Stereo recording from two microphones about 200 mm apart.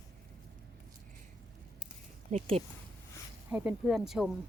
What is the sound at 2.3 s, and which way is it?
Speech, 30° right (ahead or behind).